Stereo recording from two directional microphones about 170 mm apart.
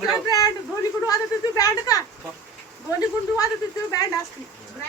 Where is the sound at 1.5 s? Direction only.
20° left (ahead or behind).